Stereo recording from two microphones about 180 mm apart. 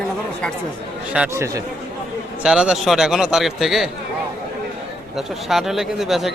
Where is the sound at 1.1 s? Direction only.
10° right (ahead or behind).